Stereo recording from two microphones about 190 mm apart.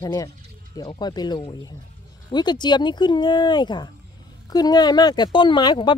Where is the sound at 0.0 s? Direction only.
20° left (ahead or behind).